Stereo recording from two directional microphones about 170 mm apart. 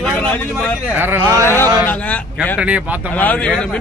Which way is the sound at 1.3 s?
15° left (ahead or behind).